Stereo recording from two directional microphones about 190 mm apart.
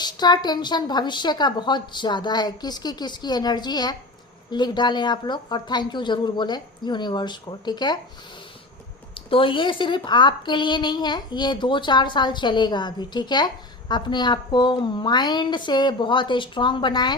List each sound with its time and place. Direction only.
0.0 s a woman's voice: 20° left (ahead or behind)
9.3 s a woman's voice: 25° left (ahead or behind)